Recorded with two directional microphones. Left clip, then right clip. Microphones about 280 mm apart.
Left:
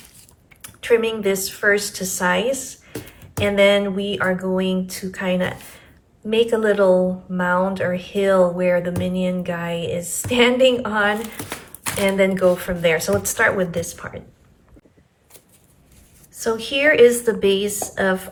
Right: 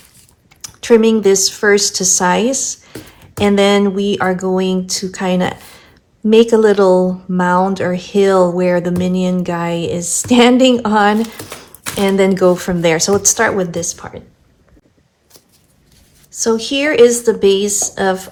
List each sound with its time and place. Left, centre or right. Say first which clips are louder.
0.6 s speech: right 7 dB; centre
11.4 s a sound: right 2 dB; centre
12.0 s speech: right 5 dB; centre
16.4 s speech: right 4 dB; centre